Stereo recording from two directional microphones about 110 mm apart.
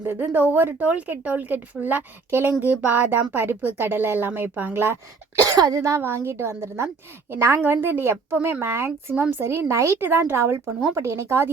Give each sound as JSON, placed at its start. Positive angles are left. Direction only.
{"t": 0.0, "sound": "a woman's voice", "side_deg": -20}
{"t": 5.4, "sound": "a woman's voice", "side_deg": -35}